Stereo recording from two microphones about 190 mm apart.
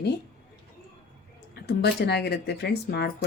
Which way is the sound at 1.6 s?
60° left (ahead or behind).